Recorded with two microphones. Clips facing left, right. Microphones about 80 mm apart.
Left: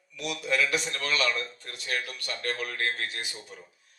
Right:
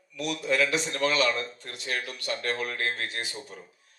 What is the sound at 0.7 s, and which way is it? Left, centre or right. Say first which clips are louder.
Speech: right 1 dB; left.